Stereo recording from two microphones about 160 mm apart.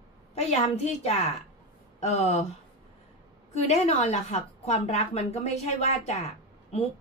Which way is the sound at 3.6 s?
45° left (ahead or behind).